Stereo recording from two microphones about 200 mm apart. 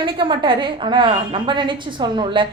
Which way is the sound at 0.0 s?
25° right (ahead or behind).